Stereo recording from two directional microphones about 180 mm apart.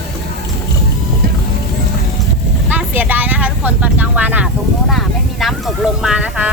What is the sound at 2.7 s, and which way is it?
Vehicle, 10° right (ahead or behind).